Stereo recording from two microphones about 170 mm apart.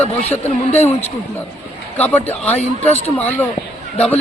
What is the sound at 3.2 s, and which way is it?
A man's voice, 10° left (ahead or behind).